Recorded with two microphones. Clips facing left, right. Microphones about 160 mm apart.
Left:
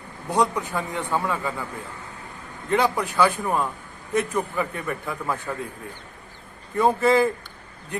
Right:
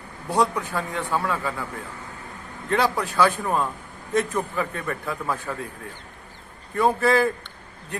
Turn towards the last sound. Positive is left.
turn(degrees=20)  # may be behind; listen again after turning